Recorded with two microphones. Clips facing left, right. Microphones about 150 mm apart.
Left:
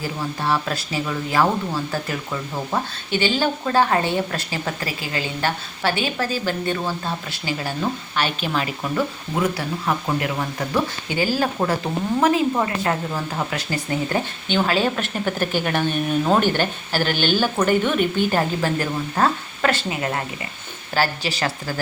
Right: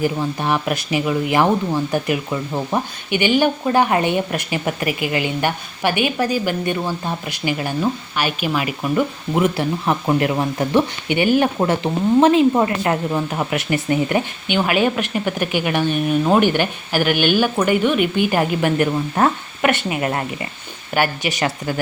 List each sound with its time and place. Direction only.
0.0 s speech: 20° right (ahead or behind)